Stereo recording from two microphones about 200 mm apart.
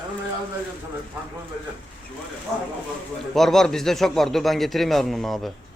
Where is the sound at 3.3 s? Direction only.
Centre (ahead or behind).